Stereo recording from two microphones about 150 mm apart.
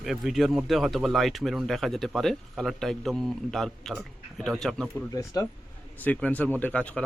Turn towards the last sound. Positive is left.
turn(degrees=10)  # may be behind; listen again after turning